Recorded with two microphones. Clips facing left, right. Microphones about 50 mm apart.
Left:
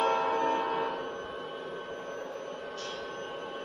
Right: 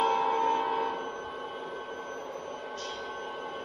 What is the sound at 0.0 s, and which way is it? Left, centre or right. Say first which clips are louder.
Church bell: right 1 dB; left.